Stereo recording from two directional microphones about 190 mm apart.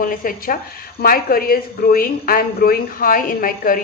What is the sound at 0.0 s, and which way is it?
A woman's voice, 45° left (ahead or behind).